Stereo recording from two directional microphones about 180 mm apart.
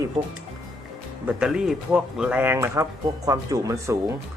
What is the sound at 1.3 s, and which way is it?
Speech, 5° right (ahead or behind).